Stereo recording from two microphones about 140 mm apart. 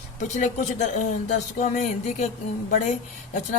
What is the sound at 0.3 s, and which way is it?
Speech, 60° left (ahead or behind).